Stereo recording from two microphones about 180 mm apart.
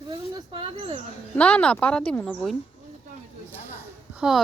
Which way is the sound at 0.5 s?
30° right (ahead or behind).